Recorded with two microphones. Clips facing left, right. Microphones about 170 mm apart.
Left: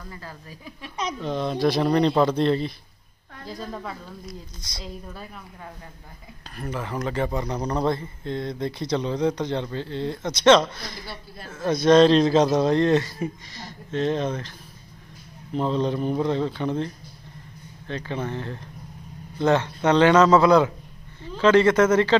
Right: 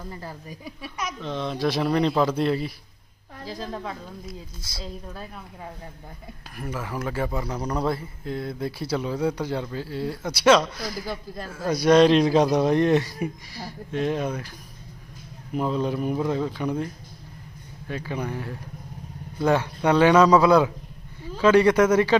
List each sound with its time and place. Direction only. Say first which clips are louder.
0.0 s speech: right 3 dB; 25° right (ahead or behind)
0.3 s a man's voice: right 3 dB; 15° right (ahead or behind)
1.2 s speech: left 3 dB; 5° left (ahead or behind)
6.5 s a man's voice: left 1 dB; 10° right (ahead or behind)
15.5 s a man's voice: left 1 dB; 5° right (ahead or behind)